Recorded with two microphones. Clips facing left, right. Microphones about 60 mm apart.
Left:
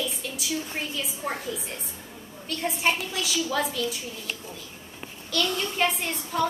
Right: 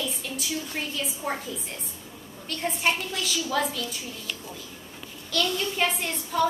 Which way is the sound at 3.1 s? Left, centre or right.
Centre.